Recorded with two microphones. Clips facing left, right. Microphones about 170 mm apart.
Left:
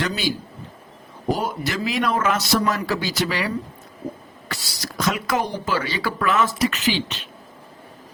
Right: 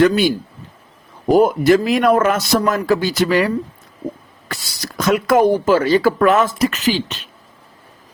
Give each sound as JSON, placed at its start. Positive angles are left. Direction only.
{"t": 0.0, "sound": "a man's voice", "side_deg": -55}